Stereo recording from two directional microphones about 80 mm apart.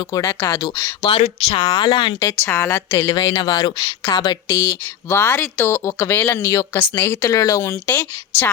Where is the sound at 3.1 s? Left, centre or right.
Left.